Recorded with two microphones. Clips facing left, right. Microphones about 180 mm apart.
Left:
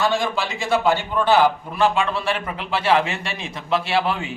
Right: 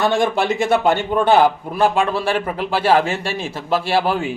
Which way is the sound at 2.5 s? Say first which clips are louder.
Right 3 dB; 40° right (ahead or behind).